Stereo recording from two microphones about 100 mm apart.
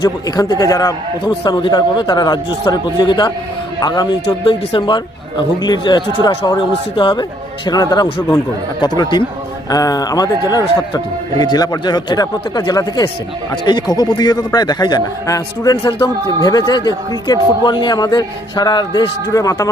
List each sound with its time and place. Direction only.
0.0 s a man's voice: 40° left (ahead or behind)
6.9 s a man's voice: 50° left (ahead or behind); by 19.7 s 35° left (ahead or behind)